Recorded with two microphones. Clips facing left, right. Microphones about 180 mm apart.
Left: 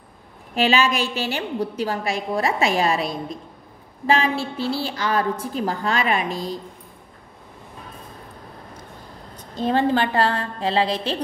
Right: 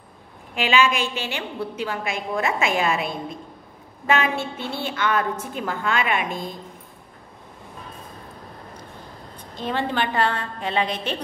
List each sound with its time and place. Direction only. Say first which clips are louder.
0.6 s a woman's voice: left 1 dB; 40° left (ahead or behind)
9.4 s a woman's voice: left 6 dB; 40° left (ahead or behind)